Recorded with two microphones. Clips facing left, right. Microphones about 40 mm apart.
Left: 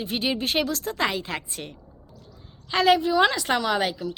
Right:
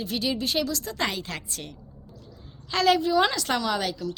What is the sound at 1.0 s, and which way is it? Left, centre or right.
A woman's voice, centre.